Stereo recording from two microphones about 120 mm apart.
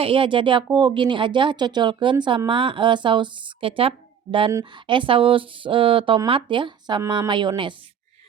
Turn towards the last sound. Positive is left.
turn(degrees=-40)  # may be behind; listen again after turning